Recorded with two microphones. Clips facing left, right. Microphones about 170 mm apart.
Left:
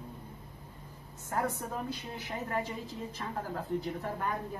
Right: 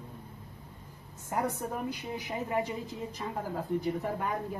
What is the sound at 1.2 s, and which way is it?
A woman's voice, 15° right (ahead or behind).